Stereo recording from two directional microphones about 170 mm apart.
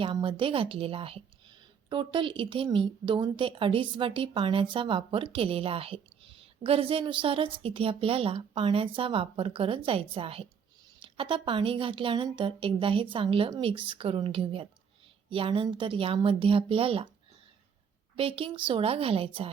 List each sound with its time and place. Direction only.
0.0 s a woman's voice: 30° right (ahead or behind)
18.2 s a woman's voice: 35° right (ahead or behind)